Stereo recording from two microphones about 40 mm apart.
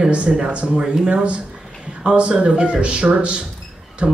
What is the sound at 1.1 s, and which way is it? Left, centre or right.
Speech, right.